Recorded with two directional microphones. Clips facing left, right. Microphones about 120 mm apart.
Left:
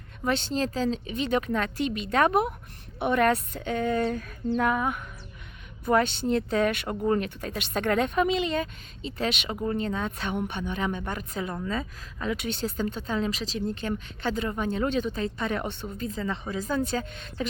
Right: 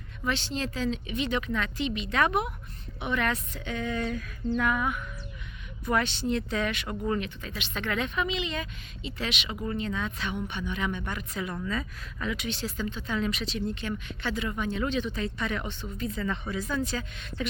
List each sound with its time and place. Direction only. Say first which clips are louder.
0.3 s speech: left 4 dB; 45° left (ahead or behind)
5.8 s speech: left 4 dB; 45° left (ahead or behind)
10.7 s speech: left 2 dB; 40° left (ahead or behind)
11.5 s speech: left 2 dB; 30° left (ahead or behind)
15.6 s a woman's voice: left 3 dB; 55° left (ahead or behind)
16.0 s speech: even; 30° left (ahead or behind)